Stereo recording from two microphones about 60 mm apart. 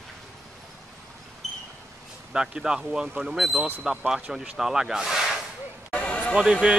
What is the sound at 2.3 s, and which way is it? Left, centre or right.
Speech, centre.